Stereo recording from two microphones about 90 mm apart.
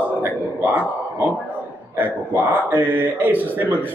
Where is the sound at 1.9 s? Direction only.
20° right (ahead or behind).